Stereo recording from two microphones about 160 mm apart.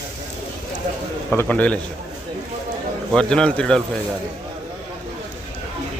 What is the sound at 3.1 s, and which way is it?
Speech, 5° left (ahead or behind).